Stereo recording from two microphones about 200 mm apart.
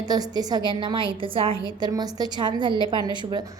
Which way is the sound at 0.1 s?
20° right (ahead or behind).